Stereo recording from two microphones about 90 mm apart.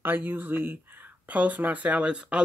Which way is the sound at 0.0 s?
20° right (ahead or behind).